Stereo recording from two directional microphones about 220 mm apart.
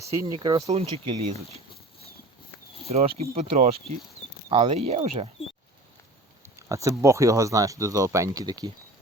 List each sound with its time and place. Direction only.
0.1 s speech: 20° right (ahead or behind)
2.8 s speech: 30° right (ahead or behind)
6.4 s speech: 15° right (ahead or behind)